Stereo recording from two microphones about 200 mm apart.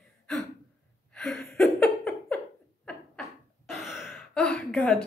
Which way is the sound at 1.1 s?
5° left (ahead or behind).